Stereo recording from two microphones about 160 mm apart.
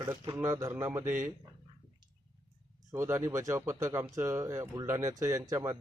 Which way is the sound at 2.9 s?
15° right (ahead or behind).